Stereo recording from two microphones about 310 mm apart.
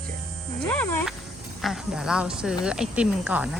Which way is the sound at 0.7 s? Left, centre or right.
Centre.